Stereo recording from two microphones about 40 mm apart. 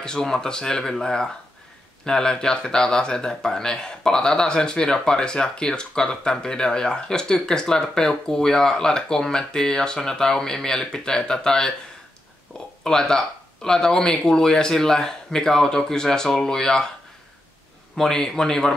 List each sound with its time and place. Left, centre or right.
0.0 s speech: centre
12.8 s speech: centre
17.9 s speech: centre